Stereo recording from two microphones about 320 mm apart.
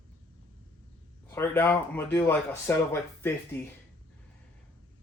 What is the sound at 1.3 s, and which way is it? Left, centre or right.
Speech, centre.